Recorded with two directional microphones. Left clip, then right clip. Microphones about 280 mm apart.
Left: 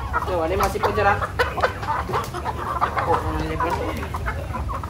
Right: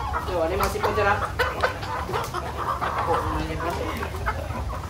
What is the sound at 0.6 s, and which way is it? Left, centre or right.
Chicken, centre.